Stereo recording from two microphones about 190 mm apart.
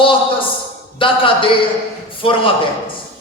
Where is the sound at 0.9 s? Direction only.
25° left (ahead or behind).